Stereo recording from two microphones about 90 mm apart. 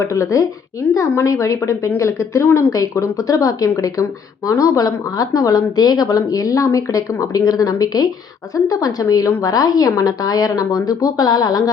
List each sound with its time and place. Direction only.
0.0 s speech: 35° left (ahead or behind)